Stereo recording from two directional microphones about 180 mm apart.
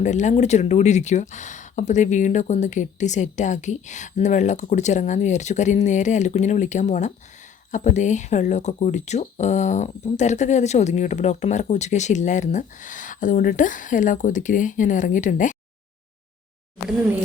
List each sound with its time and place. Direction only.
0.0 s speech: 40° left (ahead or behind)